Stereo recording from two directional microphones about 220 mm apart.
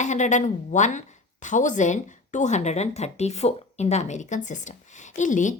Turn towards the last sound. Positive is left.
turn(degrees=35)  # may be behind; listen again after turning